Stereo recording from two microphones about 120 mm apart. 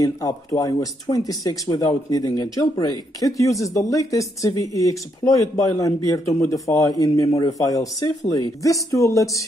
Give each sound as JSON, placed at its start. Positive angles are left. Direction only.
{"t": 0.0, "sound": "speech", "side_deg": 30}